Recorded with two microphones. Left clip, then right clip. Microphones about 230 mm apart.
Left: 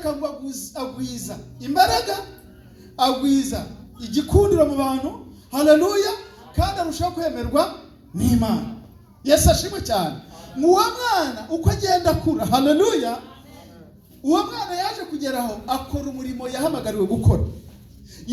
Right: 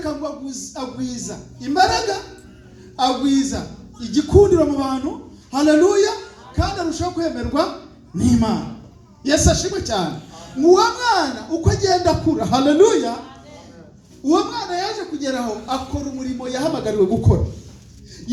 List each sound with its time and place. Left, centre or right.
0.0 s a woman's voice: left
11.6 s a woman's voice: left
14.3 s a woman's voice: left